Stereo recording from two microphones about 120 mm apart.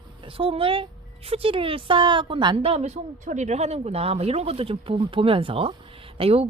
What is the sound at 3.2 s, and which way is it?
Speech, 85° right.